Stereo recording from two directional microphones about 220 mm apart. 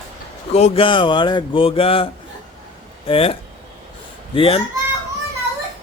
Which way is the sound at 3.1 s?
25° left (ahead or behind).